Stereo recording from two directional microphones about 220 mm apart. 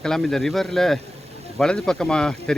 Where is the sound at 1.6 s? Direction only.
Centre (ahead or behind).